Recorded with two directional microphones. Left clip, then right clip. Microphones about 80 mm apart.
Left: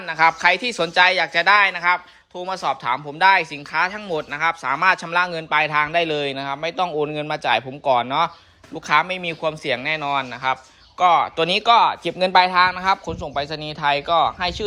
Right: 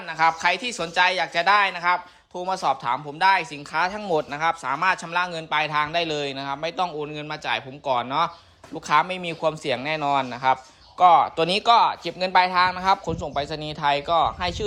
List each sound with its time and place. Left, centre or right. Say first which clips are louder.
0.0 s speech: left 4 dB; right
2.4 s speech: even; right
2.8 s speech: left 2 dB; right
3.2 s speech: left 4 dB; right
3.7 s speech: right 1 dB; right
4.6 s a man's voice: left 4 dB; right
7.1 s a man's voice: left 7 dB; centre
8.7 s speech: left 2 dB; right
11.1 s speech: left 1 dB; right
11.7 s a man's voice: left 3 dB; right
12.0 s speech: left 4 dB; centre
12.5 s a man's voice: left 4 dB; right
12.7 s speech: left 1 dB; right